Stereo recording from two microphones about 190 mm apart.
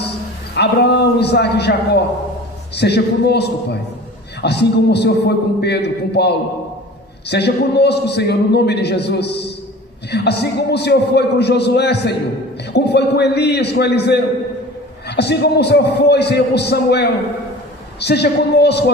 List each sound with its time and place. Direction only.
0.5 s a man's voice: 60° left (ahead or behind)